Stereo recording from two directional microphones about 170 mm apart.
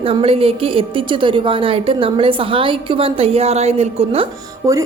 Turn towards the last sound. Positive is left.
turn(degrees=-20)  # may be behind; listen again after turning